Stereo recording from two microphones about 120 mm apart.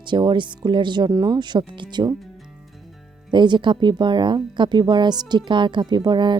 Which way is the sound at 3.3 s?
40° right (ahead or behind).